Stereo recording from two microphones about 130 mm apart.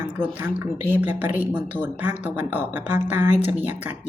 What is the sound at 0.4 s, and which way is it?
Speech, 15° right (ahead or behind).